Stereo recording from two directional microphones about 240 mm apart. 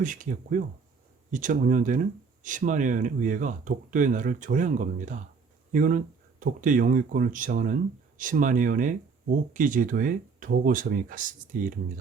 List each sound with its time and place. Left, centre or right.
0.0 s speech: right